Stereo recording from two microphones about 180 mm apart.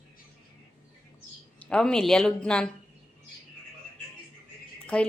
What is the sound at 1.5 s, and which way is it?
A woman's voice, 5° left (ahead or behind).